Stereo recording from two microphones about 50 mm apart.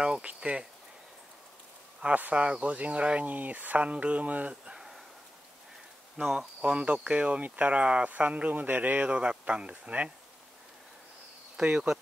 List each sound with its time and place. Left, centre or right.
0.0 s speech: right
2.1 s speech: right
4.7 s a sound: centre
6.6 s speech: right
11.6 s speech: right